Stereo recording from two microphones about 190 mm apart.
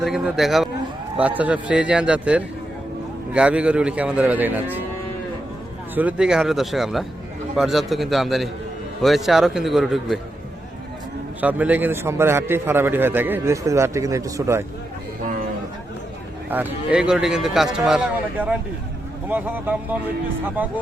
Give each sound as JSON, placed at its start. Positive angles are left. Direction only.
{"t": 0.0, "sound": "a man's voice", "side_deg": 0}
{"t": 5.9, "sound": "speech", "side_deg": -10}
{"t": 11.3, "sound": "a man's voice", "side_deg": -10}
{"t": 15.2, "sound": "a sound", "side_deg": -45}
{"t": 16.5, "sound": "a man's voice", "side_deg": -10}